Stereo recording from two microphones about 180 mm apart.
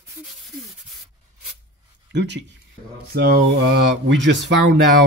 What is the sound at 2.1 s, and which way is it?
Speech, 75° right (ahead or behind).